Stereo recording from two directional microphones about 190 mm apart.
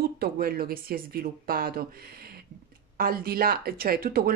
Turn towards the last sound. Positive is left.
turn(degrees=-50)  # may be behind; listen again after turning